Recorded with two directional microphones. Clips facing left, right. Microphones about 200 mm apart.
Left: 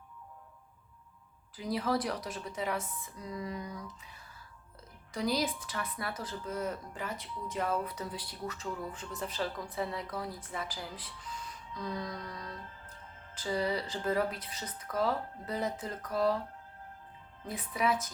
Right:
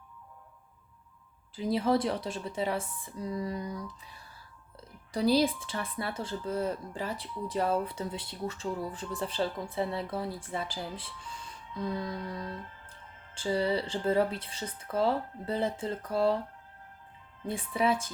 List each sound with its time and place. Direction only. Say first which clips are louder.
1.5 s speech: right 5 dB; 25° right (ahead or behind)
5.1 s speech: right 6 dB; 30° right (ahead or behind)
17.4 s speech: right 4 dB; 30° right (ahead or behind)